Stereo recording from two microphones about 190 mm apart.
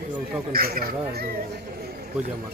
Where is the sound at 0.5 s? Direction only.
55° right (ahead or behind).